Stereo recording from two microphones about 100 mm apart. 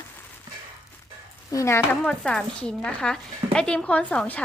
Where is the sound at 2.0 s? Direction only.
10° left (ahead or behind).